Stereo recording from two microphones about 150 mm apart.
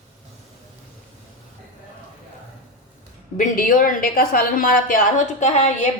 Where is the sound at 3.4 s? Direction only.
65° left (ahead or behind).